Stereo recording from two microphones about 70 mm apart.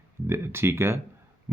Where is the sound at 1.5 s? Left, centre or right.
Right.